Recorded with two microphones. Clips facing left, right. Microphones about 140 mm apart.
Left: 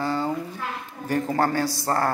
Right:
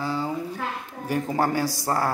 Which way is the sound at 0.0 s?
Centre (ahead or behind).